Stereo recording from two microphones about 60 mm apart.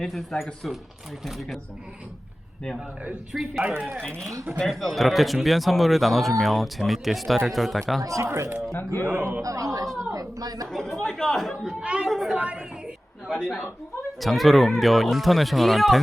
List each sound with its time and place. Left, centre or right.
0.0 s speech: centre
3.3 s speech: centre
4.2 s speech: right
4.6 s speech: centre
8.0 s a man's voice: right
9.4 s speech: right
10.1 s a sound: right
10.7 s speech: centre
11.8 s speech: centre
12.0 s speech: centre
12.4 s a woman's voice: centre
13.2 s speech: centre